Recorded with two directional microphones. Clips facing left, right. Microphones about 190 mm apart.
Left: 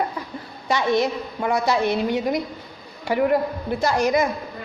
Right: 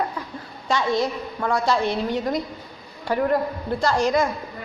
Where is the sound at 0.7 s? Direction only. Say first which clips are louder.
Left 2 dB; 20° left (ahead or behind).